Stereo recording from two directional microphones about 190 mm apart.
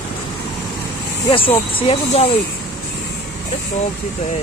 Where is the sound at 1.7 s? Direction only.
30° left (ahead or behind).